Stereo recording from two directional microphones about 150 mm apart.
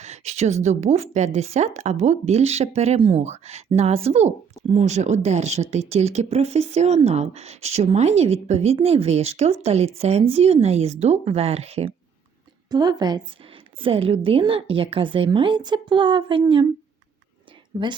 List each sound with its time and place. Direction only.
0.0 s speech: 50° right (ahead or behind)
12.7 s a woman's voice: 25° right (ahead or behind)
13.8 s a woman's voice: 40° right (ahead or behind)
17.7 s a woman's voice: 30° right (ahead or behind)